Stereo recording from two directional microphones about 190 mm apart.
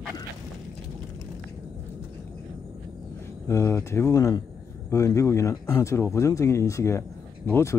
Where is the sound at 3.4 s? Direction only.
15° left (ahead or behind).